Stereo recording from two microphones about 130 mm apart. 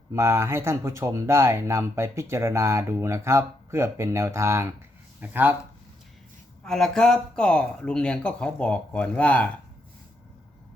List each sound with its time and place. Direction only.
0.1 s speech: 20° right (ahead or behind)
6.7 s speech: 5° left (ahead or behind)